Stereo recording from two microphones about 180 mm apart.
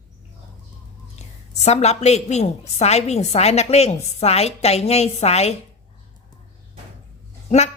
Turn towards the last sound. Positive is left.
turn(degrees=40)  # may be behind; listen again after turning